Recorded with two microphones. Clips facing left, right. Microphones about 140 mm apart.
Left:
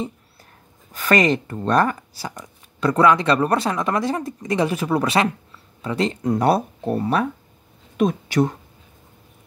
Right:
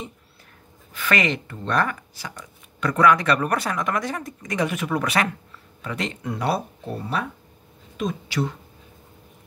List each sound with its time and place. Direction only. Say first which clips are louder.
0.9 s speech: left 6 dB; 40° left (ahead or behind)
6.3 s speech: left 6 dB; 45° left (ahead or behind)